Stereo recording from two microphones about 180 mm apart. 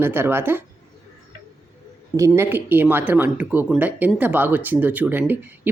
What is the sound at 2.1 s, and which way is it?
Speech, 15° right (ahead or behind).